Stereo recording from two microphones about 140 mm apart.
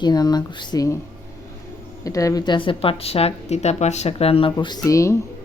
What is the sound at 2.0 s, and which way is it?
Speech, 25° left (ahead or behind).